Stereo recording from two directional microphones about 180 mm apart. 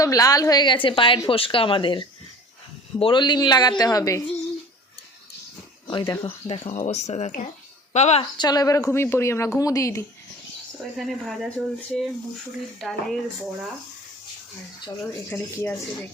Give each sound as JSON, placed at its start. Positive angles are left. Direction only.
{"t": 0.0, "sound": "a woman's voice", "side_deg": 20}
{"t": 5.9, "sound": "speech", "side_deg": 25}
{"t": 8.4, "sound": "speech", "side_deg": 20}
{"t": 10.9, "sound": "speech", "side_deg": 0}
{"t": 15.3, "sound": "speech", "side_deg": 15}